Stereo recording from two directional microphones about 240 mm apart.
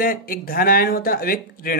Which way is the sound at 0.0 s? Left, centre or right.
Left.